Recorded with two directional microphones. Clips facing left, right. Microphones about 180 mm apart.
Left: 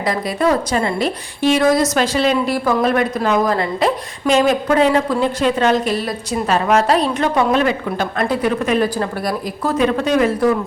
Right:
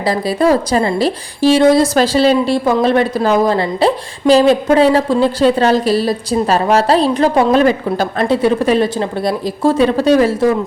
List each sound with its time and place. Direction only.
0.0 s a woman's voice: 30° right (ahead or behind)